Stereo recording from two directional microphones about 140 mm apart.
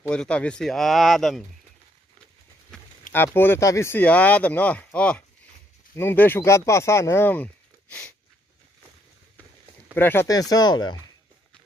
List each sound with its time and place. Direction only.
0.1 s speech: 5° left (ahead or behind)
3.1 s speech: 15° left (ahead or behind)
9.9 s speech: 15° left (ahead or behind)
10.2 s speech: 25° left (ahead or behind)